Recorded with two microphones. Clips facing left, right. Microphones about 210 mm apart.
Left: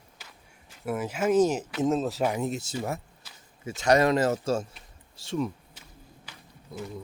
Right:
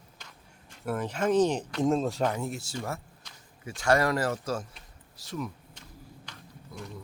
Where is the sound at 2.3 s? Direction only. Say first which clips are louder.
Left 4 dB; 20° left (ahead or behind).